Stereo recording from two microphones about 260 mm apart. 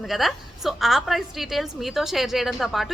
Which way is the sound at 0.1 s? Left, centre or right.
Centre.